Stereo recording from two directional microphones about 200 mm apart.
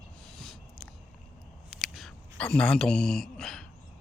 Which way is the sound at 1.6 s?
Centre (ahead or behind).